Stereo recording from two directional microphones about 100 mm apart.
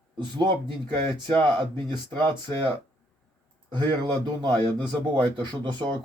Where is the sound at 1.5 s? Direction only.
50° right (ahead or behind).